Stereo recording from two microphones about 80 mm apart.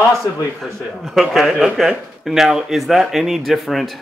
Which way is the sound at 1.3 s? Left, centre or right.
Centre.